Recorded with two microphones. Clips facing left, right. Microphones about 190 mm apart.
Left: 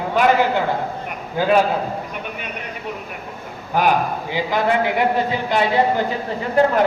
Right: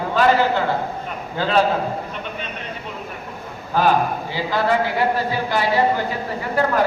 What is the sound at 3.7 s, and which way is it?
A man's voice, 15° left (ahead or behind).